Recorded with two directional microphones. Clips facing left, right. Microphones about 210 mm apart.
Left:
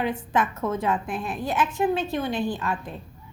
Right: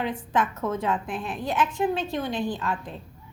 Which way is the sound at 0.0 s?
5° left (ahead or behind).